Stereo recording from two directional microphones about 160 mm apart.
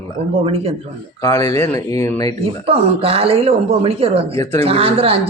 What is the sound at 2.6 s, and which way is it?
Speech, 35° right (ahead or behind).